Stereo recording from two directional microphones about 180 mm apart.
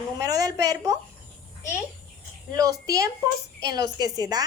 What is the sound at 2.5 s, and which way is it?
A woman's voice, 20° right (ahead or behind).